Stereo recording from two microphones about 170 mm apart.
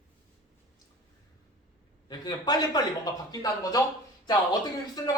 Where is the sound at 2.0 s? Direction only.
25° left (ahead or behind).